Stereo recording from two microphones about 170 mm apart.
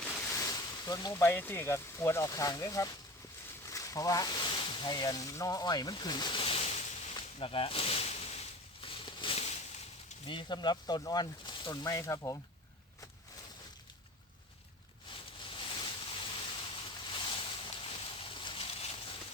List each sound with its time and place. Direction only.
0.3 s speech: 20° left (ahead or behind); by 6.8 s 35° left (ahead or behind)
7.3 s a sound: 35° left (ahead or behind)
10.2 s speech: 25° left (ahead or behind)
15.1 s boat: 30° left (ahead or behind)